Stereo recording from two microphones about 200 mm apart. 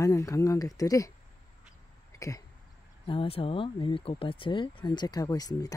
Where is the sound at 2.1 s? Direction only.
15° left (ahead or behind).